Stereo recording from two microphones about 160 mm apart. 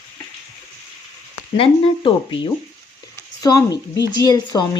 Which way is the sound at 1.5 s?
35° left (ahead or behind).